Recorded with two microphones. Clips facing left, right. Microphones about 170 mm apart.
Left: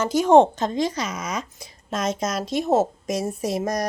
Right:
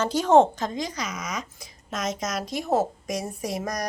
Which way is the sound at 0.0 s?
10° left (ahead or behind).